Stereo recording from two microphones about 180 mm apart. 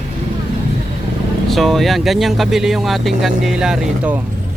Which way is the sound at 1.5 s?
Centre (ahead or behind).